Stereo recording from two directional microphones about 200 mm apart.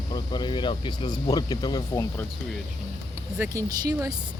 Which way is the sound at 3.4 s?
15° right (ahead or behind).